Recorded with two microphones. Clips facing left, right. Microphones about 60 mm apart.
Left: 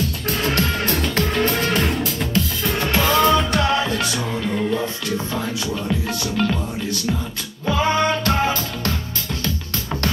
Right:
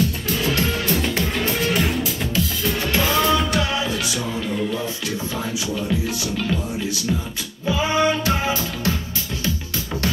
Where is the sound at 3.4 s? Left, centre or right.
Left.